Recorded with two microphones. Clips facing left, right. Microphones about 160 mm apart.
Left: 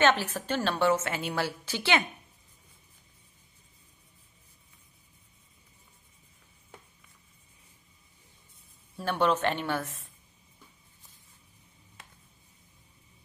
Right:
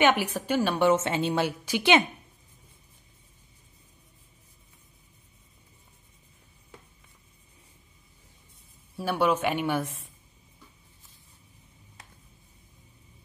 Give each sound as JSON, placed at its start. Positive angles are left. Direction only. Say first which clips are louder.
{"t": 0.0, "sound": "a woman's voice", "louder": "right 2 dB", "side_deg": -15}
{"t": 8.9, "sound": "a woman's voice", "louder": "right 2 dB", "side_deg": -10}